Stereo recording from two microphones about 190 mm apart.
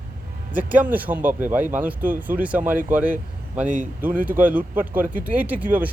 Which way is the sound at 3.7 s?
45° right (ahead or behind).